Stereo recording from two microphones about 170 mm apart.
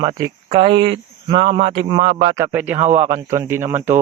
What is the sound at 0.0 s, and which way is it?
A man's voice, 25° right (ahead or behind).